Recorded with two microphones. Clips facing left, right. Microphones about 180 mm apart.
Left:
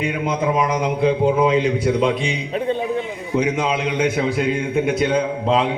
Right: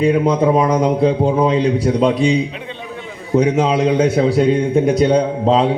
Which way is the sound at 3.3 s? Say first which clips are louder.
Right 6 dB; 35° right (ahead or behind).